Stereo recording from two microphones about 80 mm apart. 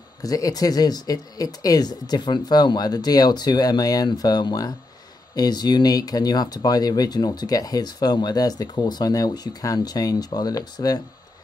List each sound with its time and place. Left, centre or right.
0.2 s speech: left